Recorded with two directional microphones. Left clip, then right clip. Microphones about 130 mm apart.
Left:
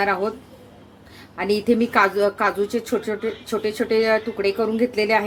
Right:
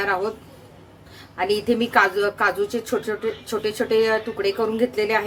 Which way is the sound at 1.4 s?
40° left (ahead or behind).